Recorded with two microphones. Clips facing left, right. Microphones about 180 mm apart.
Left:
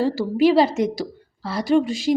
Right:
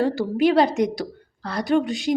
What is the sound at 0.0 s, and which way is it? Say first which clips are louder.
A woman's voice: left 2 dB; centre (ahead or behind).